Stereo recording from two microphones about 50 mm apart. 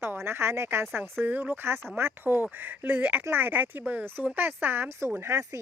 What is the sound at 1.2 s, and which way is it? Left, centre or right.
Speech, right.